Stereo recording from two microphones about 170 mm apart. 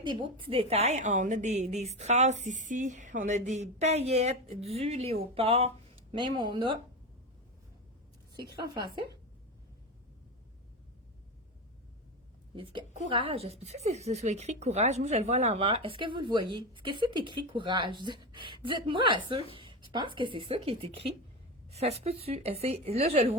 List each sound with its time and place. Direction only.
0.0 s a woman's voice: 30° right (ahead or behind)
12.5 s a woman's voice: 30° right (ahead or behind)
12.9 s a woman's voice: 45° right (ahead or behind)